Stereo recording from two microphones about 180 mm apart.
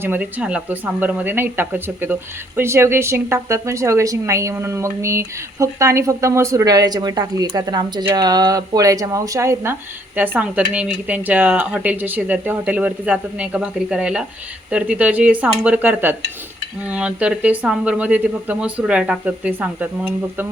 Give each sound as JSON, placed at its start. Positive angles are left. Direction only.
{"t": 0.0, "sound": "a woman's voice", "side_deg": -10}